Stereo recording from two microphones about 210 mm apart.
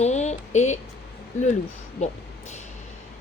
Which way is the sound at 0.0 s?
35° left (ahead or behind).